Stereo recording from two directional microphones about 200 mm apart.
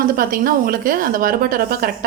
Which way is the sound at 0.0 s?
45° right (ahead or behind).